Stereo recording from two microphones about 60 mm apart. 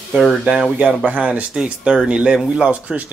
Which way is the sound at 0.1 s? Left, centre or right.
Centre.